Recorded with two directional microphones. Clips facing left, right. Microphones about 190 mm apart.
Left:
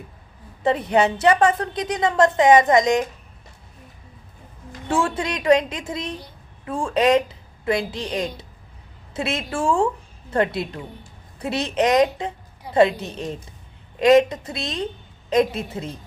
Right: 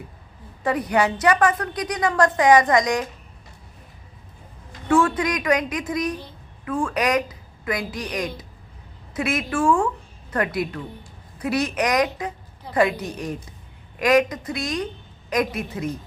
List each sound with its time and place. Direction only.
0.6 s a woman's voice: 25° left (ahead or behind)
4.9 s a woman's voice: 30° left (ahead or behind)
12.7 s a sound: 10° left (ahead or behind)
13.0 s a woman's voice: 25° left (ahead or behind)